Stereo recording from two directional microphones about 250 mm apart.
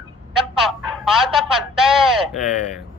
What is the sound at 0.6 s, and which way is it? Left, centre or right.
Speech, centre.